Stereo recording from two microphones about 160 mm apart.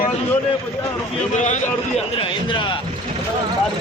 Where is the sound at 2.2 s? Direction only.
30° left (ahead or behind).